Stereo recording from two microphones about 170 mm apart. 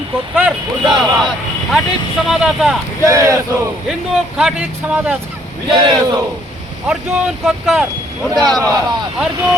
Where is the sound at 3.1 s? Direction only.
20° right (ahead or behind).